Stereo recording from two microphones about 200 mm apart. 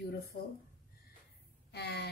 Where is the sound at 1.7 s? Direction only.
55° left (ahead or behind).